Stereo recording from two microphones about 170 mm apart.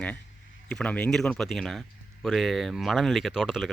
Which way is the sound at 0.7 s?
5° left (ahead or behind).